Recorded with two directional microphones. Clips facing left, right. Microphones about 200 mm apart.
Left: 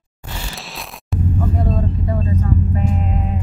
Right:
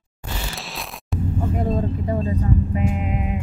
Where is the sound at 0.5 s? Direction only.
Centre (ahead or behind).